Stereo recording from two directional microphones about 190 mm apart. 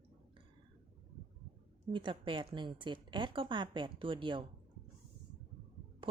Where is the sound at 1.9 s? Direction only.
25° right (ahead or behind).